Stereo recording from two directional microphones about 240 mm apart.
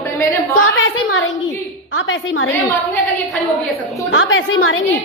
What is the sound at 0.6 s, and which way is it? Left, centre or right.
A woman's voice, left.